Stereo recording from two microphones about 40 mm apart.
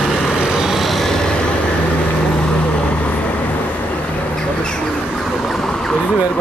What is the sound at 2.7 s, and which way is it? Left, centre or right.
Vehicle, left.